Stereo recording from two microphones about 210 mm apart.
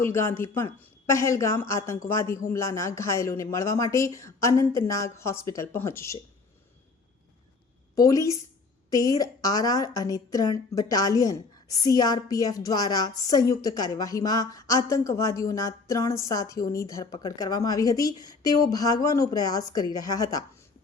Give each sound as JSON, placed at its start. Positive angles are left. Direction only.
{"t": 0.0, "sound": "a woman's voice", "side_deg": 10}
{"t": 7.9, "sound": "a woman's voice", "side_deg": 15}